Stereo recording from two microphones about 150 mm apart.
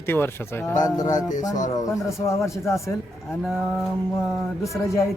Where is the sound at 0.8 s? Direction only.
25° left (ahead or behind).